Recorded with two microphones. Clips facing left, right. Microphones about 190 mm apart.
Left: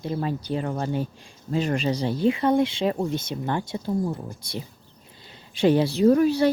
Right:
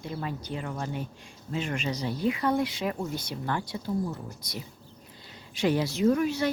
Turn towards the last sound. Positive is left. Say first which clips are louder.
# left 6 dB
turn(degrees=35)  # may be behind; listen again after turning